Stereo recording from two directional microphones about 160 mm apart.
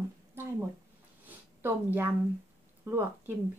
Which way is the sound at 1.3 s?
10° right (ahead or behind).